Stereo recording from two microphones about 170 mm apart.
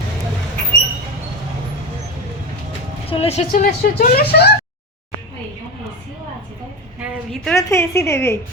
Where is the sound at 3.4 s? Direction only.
60° left (ahead or behind).